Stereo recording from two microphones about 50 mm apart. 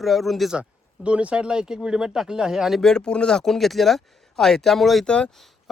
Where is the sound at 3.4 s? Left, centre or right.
Centre.